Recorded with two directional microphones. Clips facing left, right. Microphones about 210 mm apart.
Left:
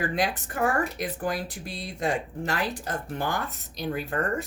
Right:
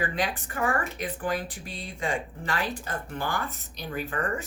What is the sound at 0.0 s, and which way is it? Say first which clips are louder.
Speech: left 2 dB; 40° left (ahead or behind).